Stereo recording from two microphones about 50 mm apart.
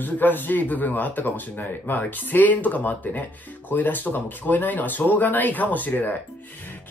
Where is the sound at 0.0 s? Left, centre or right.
Left.